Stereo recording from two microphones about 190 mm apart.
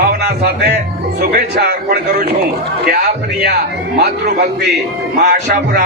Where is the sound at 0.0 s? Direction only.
55° right (ahead or behind).